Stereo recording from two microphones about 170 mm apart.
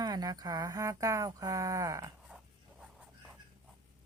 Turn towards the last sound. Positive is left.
turn(degrees=-5)  # may be behind; listen again after turning